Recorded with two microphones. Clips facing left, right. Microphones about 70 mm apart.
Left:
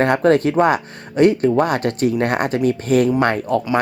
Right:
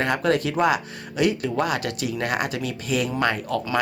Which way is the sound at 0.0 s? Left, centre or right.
Left.